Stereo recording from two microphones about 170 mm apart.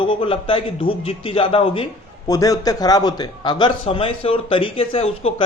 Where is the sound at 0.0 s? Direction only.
30° left (ahead or behind).